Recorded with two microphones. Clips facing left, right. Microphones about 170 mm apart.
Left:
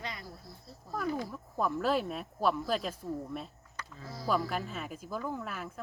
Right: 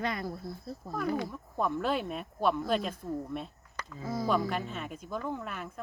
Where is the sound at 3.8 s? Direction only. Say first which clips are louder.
Right 3 dB; 80° right.